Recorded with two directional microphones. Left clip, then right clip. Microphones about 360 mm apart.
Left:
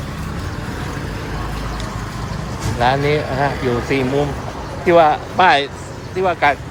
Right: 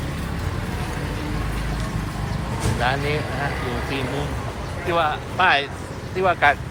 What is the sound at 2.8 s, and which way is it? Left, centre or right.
Speech, centre.